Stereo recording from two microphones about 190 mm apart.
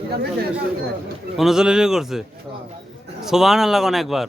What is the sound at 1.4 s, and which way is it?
Speech, centre (ahead or behind).